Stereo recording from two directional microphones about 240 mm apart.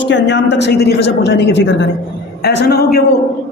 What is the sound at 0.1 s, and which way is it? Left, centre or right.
A man's voice, left.